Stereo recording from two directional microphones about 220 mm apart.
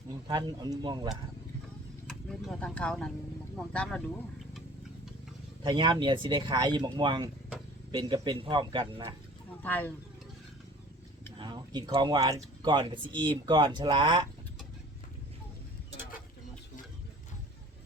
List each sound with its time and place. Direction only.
0.3 s speech: 20° right (ahead or behind)
2.5 s speech: 5° left (ahead or behind)
5.6 s speech: 20° right (ahead or behind)
9.6 s speech: 10° left (ahead or behind)
11.3 s speech: 20° right (ahead or behind)